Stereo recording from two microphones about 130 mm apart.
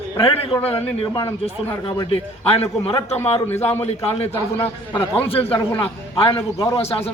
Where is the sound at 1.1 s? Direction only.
30° left (ahead or behind).